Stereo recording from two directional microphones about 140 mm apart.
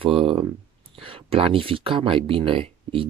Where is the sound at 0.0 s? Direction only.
40° right (ahead or behind).